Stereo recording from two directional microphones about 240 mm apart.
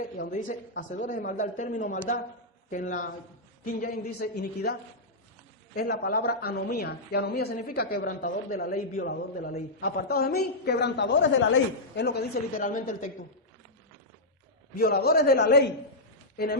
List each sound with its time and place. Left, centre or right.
0.2 s a woman's voice: left
14.8 s a woman's voice: left